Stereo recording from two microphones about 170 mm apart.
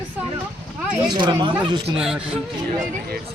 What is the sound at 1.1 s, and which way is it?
Speech, 25° right (ahead or behind).